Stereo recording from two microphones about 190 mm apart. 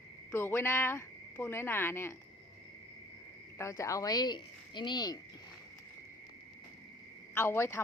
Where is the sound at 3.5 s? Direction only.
15° left (ahead or behind).